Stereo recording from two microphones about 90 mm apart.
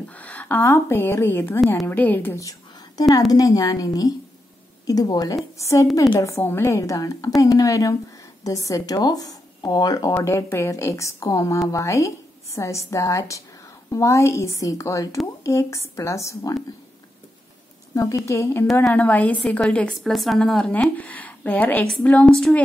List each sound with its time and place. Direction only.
0.1 s a sound: 15° left (ahead or behind)
0.6 s speech: 30° left (ahead or behind)
3.0 s a woman's voice: 45° left (ahead or behind)
10.2 s a woman's voice: 30° left (ahead or behind)
17.9 s a woman's voice: 40° left (ahead or behind)
18.9 s a woman's voice: 20° left (ahead or behind)
19.9 s a woman's voice: centre (ahead or behind)
20.9 s a woman's voice: 15° left (ahead or behind)